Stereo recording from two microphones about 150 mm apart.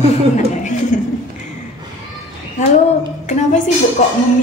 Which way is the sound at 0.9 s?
55° left (ahead or behind).